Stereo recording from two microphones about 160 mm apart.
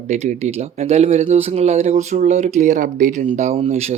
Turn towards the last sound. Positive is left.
turn(degrees=-40)  # may be behind; listen again after turning